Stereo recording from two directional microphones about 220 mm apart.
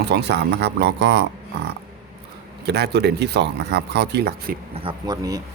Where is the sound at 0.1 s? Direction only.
50° right (ahead or behind).